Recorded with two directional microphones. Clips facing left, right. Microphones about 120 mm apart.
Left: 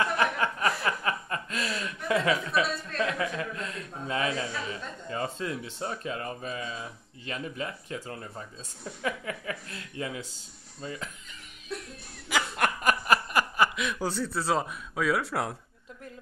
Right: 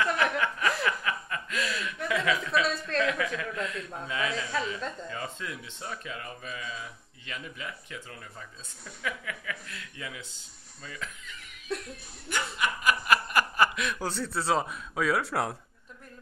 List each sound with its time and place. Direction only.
0.0 s chuckle: 30° left (ahead or behind)
3.0 s a man's voice: 30° left (ahead or behind)
10.8 s music: 30° left (ahead or behind)
12.3 s snicker: 80° left
12.8 s a sound: 35° left (ahead or behind)
13.6 s speech: 10° left (ahead or behind)